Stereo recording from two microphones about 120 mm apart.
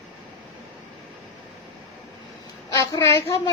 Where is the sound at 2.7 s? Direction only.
25° left (ahead or behind).